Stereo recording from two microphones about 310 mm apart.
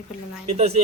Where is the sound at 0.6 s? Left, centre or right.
Centre.